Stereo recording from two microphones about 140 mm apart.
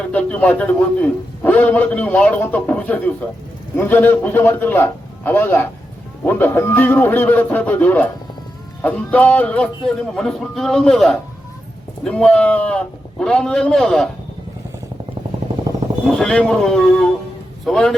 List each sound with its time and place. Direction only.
0.1 s a man's voice: 10° left (ahead or behind)
16.0 s a man's voice: 5° left (ahead or behind)